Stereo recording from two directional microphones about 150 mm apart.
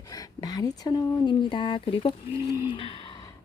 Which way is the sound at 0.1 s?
25° left (ahead or behind).